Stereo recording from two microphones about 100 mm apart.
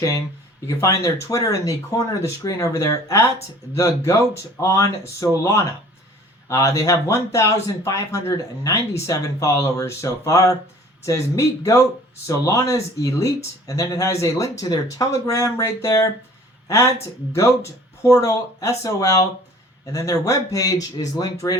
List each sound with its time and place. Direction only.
0.7 s speech: 30° left (ahead or behind)
21.0 s speech: 50° left (ahead or behind)
21.4 s speech: 30° left (ahead or behind)